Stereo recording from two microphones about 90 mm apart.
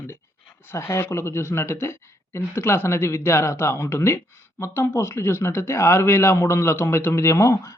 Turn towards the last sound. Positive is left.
turn(degrees=35)  # may be behind; listen again after turning